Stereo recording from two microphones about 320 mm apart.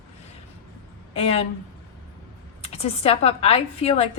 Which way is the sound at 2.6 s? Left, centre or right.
Centre.